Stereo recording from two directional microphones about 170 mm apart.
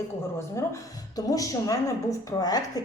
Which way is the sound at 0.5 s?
20° left (ahead or behind).